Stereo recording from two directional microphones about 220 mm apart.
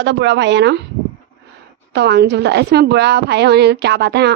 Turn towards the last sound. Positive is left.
turn(degrees=-50)  # may be behind; listen again after turning